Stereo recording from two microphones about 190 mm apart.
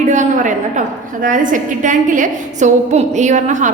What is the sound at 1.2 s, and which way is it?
A woman's voice, 45° right (ahead or behind).